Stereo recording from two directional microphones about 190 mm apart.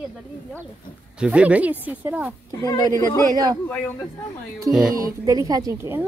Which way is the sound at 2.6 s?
20° left (ahead or behind).